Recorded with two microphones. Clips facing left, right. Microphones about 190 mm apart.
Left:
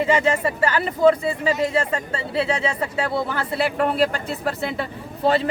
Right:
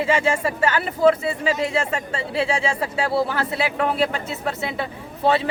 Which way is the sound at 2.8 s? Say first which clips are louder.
Right 2 dB; 5° right (ahead or behind).